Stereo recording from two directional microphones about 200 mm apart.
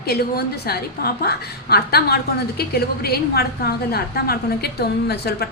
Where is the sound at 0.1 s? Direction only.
50° left (ahead or behind).